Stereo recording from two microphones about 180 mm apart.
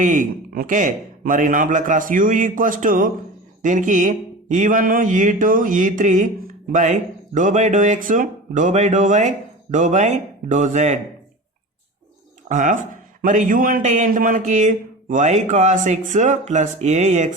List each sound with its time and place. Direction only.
0.0 s speech: 45° right (ahead or behind)
12.5 s speech: 45° right (ahead or behind)